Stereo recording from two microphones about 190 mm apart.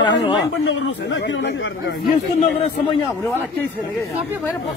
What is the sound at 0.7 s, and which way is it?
Speech, 75° left (ahead or behind).